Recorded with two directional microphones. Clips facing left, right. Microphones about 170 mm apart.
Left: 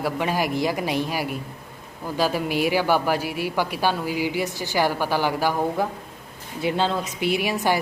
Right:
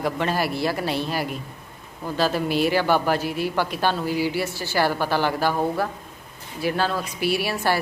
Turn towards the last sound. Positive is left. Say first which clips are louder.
# left 1 dB
turn(degrees=15)  # may be behind; listen again after turning